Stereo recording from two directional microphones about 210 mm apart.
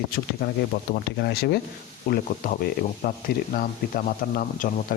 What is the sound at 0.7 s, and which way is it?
Speech, 45° left (ahead or behind).